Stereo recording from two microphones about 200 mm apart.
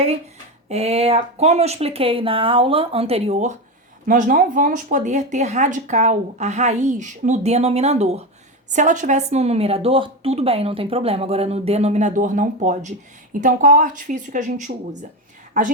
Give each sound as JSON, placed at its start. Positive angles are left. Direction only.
{"t": 0.7, "sound": "a woman's voice", "side_deg": -30}